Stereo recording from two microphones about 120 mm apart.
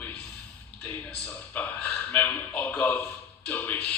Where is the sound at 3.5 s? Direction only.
15° left (ahead or behind).